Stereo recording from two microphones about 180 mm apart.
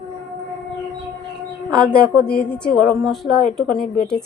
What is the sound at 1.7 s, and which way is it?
A woman's voice, 5° left (ahead or behind).